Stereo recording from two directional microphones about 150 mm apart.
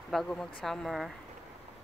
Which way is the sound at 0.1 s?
5° left (ahead or behind).